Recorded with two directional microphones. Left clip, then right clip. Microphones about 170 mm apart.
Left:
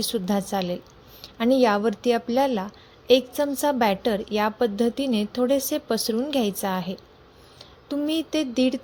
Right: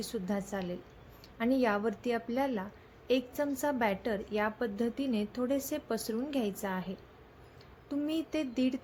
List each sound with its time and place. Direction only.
0.0 s speech: 45° left (ahead or behind)